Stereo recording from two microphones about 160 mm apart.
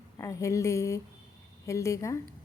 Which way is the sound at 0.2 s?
20° left (ahead or behind).